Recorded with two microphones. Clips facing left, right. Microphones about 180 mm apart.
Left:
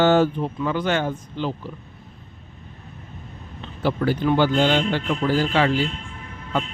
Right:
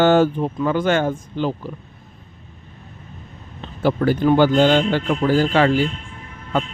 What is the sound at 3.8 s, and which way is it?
A man's voice, 45° right (ahead or behind).